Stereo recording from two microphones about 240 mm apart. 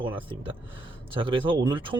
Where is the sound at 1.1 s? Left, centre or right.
Right.